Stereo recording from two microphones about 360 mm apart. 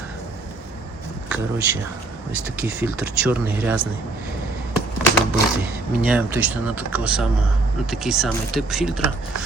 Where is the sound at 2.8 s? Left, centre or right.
Centre.